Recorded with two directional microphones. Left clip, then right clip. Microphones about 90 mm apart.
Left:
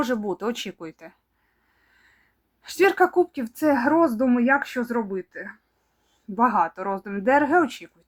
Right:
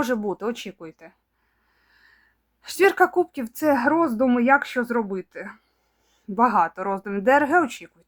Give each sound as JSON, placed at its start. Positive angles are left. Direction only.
{"t": 0.3, "sound": "speech", "side_deg": 5}
{"t": 1.8, "sound": "a sound", "side_deg": -10}
{"t": 2.6, "sound": "speech", "side_deg": -20}